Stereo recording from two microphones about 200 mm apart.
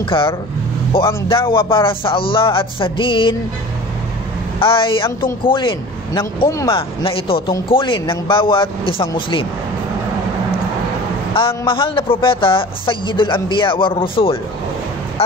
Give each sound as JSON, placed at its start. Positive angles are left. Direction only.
{"t": 0.0, "sound": "a woman's voice", "side_deg": 25}
{"t": 4.6, "sound": "a woman's voice", "side_deg": 25}
{"t": 11.3, "sound": "a woman's voice", "side_deg": 25}